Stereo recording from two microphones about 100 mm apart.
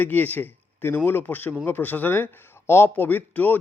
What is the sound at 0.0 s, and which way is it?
A man's voice, 15° left (ahead or behind).